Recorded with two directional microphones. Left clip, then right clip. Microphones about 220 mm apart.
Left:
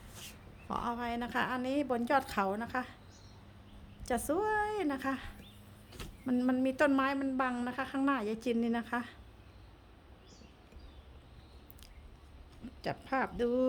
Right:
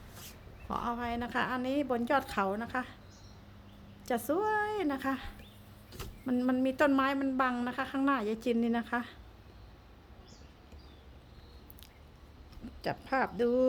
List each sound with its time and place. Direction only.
0.7 s a woman's voice: 5° left (ahead or behind)
4.0 s a woman's voice: centre (ahead or behind)
12.8 s speech: 10° right (ahead or behind)